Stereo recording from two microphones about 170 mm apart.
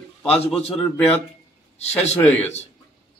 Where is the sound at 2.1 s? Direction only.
10° left (ahead or behind).